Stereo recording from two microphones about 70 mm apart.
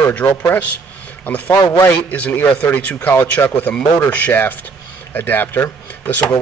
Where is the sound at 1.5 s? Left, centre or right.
Left.